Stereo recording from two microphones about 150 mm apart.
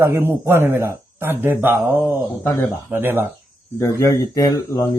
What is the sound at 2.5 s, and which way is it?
Speech, 15° left (ahead or behind).